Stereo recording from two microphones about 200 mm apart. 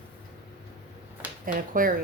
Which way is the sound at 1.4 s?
45° right (ahead or behind).